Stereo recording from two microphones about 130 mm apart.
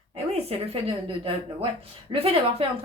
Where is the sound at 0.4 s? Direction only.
50° right (ahead or behind).